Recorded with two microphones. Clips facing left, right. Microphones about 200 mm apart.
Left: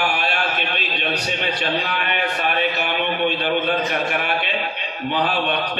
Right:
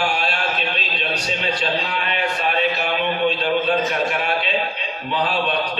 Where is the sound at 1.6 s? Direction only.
60° left (ahead or behind).